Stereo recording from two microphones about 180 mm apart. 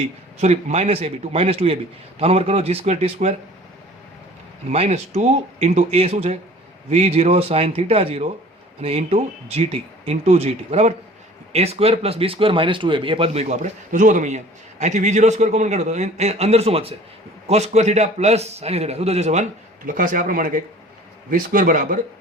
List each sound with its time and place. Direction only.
0.3 s a man's voice: 40° right (ahead or behind)
4.7 s a man's voice: 35° right (ahead or behind)